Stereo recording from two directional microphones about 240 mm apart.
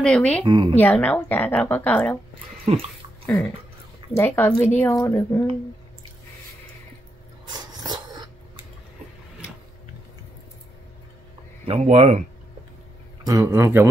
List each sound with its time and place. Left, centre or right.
0.0 s speech: centre
0.5 s speech: centre
0.7 s a woman's voice: centre
2.6 s speech: right
3.3 s a woman's voice: centre
7.4 s a sound: centre
11.6 s speech: right
13.2 s speech: centre